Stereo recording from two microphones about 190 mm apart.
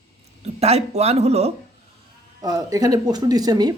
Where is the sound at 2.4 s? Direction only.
20° right (ahead or behind).